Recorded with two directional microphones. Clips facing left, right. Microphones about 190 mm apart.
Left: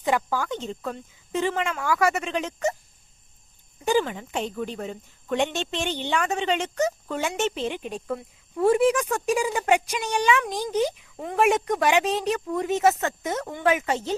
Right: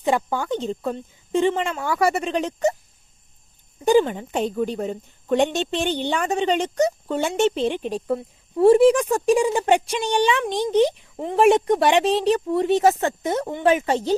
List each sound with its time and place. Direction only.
0.0 s a woman's voice: 30° right (ahead or behind)
3.8 s a woman's voice: 35° right (ahead or behind)